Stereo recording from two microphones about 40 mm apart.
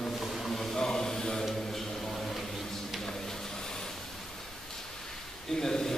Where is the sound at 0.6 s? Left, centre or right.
Centre.